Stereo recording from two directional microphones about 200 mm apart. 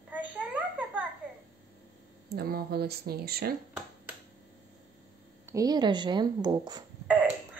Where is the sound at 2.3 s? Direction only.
50° right (ahead or behind).